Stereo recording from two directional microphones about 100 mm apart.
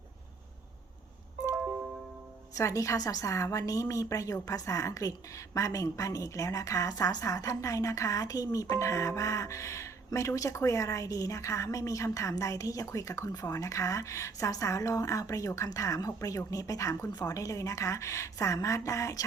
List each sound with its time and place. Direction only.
1.5 s music: 20° right (ahead or behind)
2.6 s speech: 30° left (ahead or behind)